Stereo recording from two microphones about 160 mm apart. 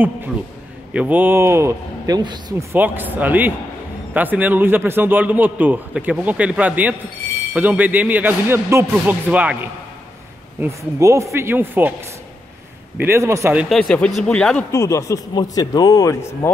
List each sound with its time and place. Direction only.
0.9 s a man's voice: 10° right (ahead or behind); by 2.4 s 25° right (ahead or behind)
2.7 s a man's voice: 10° right (ahead or behind)
10.6 s a man's voice: 20° right (ahead or behind)
13.0 s a man's voice: 15° right (ahead or behind)
13.7 s speech: 5° left (ahead or behind)
14.7 s speech: 20° left (ahead or behind)